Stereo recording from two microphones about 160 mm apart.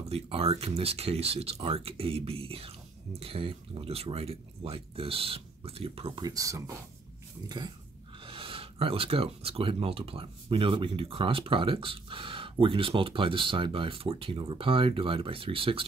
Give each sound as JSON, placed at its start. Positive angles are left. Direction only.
{"t": 0.1, "sound": "speech", "side_deg": -40}
{"t": 6.2, "sound": "speech", "side_deg": -20}